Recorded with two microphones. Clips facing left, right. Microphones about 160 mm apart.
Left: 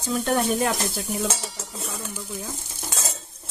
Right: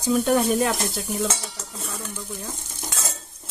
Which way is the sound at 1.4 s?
5° left (ahead or behind).